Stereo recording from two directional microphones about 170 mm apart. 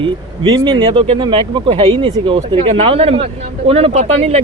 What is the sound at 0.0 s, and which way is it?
Speech, 25° right (ahead or behind).